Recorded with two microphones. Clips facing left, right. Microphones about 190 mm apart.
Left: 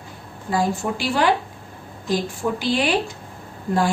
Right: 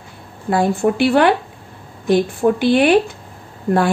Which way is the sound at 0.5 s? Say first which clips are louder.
Right 6 dB; 60° right (ahead or behind).